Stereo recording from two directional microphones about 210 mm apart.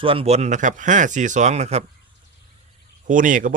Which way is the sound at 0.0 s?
25° right (ahead or behind).